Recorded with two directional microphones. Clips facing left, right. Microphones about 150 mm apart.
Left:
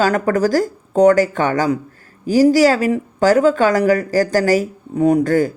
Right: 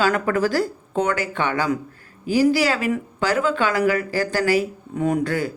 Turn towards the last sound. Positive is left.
turn(degrees=45)  # may be behind; listen again after turning